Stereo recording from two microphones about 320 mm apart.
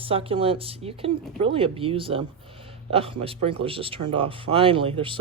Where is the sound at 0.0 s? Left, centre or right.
Centre.